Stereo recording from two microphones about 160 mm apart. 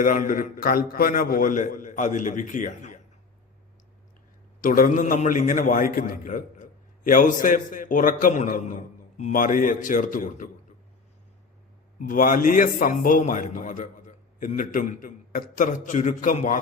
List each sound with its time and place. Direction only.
0.0 s a man's voice: 55° left (ahead or behind)
4.6 s a man's voice: 60° left (ahead or behind)
12.0 s a man's voice: 55° left (ahead or behind)